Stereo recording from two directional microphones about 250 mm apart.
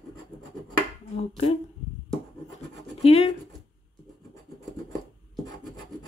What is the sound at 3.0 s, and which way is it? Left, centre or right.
Speech, left.